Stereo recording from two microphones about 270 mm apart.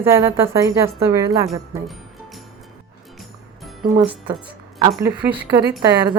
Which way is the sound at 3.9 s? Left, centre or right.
Centre.